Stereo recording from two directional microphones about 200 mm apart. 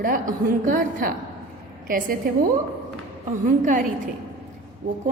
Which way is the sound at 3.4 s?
40° right (ahead or behind).